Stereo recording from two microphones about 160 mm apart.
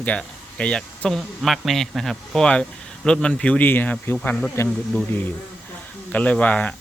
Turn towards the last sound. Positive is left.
turn(degrees=10)  # may be behind; listen again after turning